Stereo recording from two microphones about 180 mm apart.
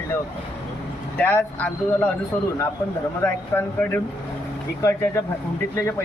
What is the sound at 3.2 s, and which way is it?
Speech, 10° left (ahead or behind).